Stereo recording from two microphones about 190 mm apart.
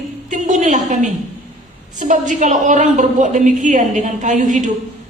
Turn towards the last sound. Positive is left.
turn(degrees=-40)  # may be behind; listen again after turning